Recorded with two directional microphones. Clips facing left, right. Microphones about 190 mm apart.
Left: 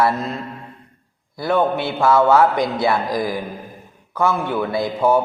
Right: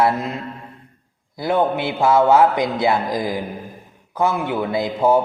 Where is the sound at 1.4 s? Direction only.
15° right (ahead or behind).